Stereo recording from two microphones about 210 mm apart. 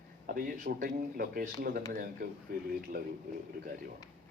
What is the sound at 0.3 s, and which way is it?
Speech, 40° right (ahead or behind).